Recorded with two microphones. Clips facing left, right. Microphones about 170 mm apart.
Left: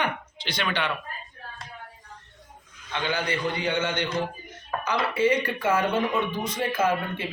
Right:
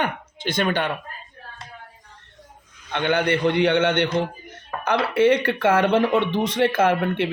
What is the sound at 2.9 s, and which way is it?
A man's voice, 60° right (ahead or behind).